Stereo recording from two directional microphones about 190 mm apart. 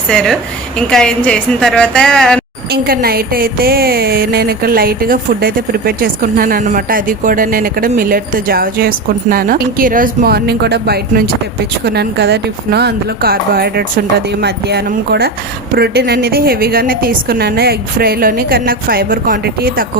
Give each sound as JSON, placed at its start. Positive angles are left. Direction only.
{"t": 0.1, "sound": "a woman's voice", "side_deg": 5}
{"t": 2.7, "sound": "speech", "side_deg": -55}